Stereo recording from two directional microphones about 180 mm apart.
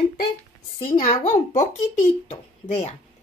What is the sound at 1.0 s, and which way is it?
A child's voice, 45° left (ahead or behind).